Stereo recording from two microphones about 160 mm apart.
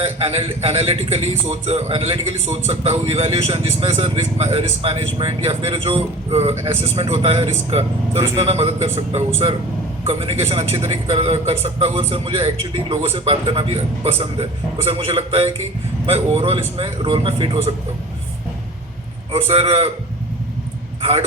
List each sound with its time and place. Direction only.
0.0 s a man's voice: 40° right (ahead or behind)
6.5 s speech: 15° right (ahead or behind)
6.8 s a man's voice: 35° right (ahead or behind)
19.3 s a man's voice: 40° right (ahead or behind)